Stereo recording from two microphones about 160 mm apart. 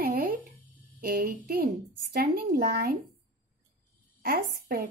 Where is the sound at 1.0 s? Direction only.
70° right (ahead or behind).